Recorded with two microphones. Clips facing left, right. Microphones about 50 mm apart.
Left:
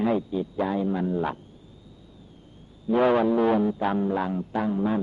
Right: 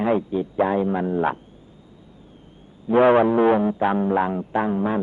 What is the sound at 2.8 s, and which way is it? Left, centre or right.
Music, right.